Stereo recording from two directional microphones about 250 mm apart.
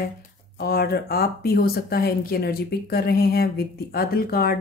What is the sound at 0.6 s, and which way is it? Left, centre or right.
Speech, left.